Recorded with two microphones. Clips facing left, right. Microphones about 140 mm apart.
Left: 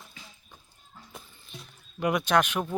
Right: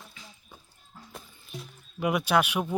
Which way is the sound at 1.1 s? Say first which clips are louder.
Right 4 dB; 5° right (ahead or behind).